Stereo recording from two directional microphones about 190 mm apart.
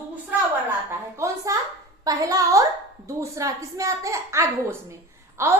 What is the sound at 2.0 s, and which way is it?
A woman's voice, 20° right (ahead or behind).